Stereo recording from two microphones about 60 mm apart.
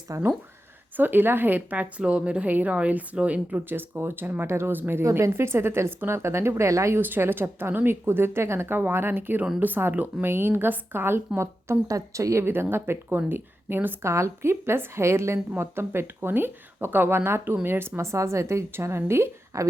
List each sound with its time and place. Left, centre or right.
0.1 s speech: right
0.9 s a woman's voice: right
2.0 s a woman's voice: centre
2.5 s a woman's voice: right
3.7 s a woman's voice: right
5.0 s speech: right
5.3 s speech: right
7.0 s a woman's voice: right
10.2 s a woman's voice: right
11.3 s speech: right
14.1 s speech: right
14.5 s speech: right